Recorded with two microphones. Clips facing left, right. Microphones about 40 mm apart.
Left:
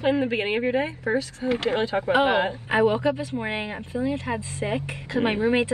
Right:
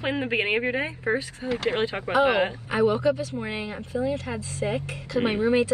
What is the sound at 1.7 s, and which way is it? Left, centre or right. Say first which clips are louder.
Speech: left 1 dB; right.